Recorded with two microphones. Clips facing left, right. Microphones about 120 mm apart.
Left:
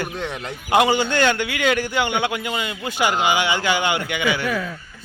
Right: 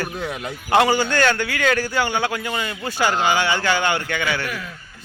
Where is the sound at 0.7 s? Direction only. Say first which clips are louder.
Even; 20° left (ahead or behind).